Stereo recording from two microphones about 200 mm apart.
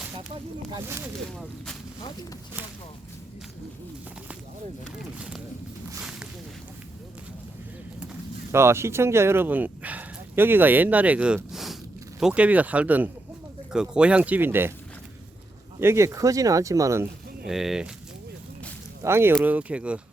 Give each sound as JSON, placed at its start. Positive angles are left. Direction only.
{"t": 0.7, "sound": "speech", "side_deg": -15}
{"t": 5.1, "sound": "speech", "side_deg": -5}
{"t": 6.0, "sound": "a sound", "side_deg": -5}
{"t": 8.5, "sound": "speech", "side_deg": -15}
{"t": 15.8, "sound": "speech", "side_deg": -15}
{"t": 17.4, "sound": "speech", "side_deg": 0}
{"t": 19.0, "sound": "speech", "side_deg": -10}